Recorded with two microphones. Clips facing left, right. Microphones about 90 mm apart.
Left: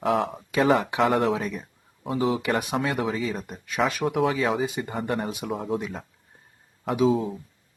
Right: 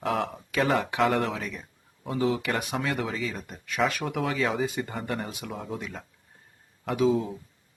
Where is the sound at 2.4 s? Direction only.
20° left (ahead or behind).